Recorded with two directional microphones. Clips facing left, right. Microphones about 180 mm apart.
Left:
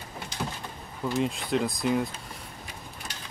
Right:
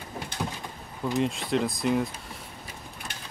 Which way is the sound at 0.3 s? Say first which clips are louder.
Right 1 dB; 55° right (ahead or behind).